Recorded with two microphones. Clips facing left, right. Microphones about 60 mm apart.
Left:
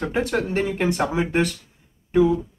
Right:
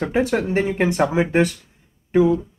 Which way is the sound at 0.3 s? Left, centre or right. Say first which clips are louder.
Right 3 dB; right.